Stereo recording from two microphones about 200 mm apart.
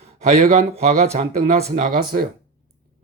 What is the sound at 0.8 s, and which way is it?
Speech, 35° right (ahead or behind).